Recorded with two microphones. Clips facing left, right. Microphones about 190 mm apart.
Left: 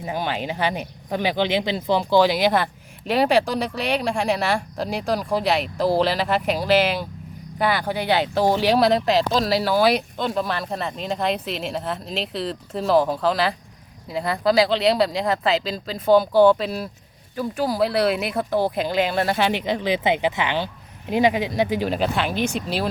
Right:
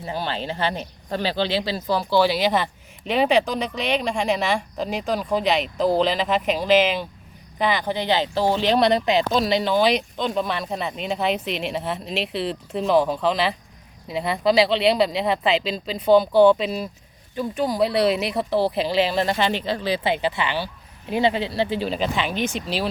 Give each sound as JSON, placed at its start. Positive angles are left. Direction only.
{"t": 0.0, "sound": "speech", "side_deg": 15}